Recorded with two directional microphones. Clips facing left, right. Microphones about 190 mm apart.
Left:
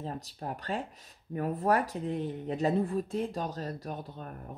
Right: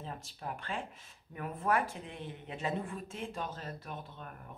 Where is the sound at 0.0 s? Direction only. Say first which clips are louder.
Left 5 dB; 40° left (ahead or behind).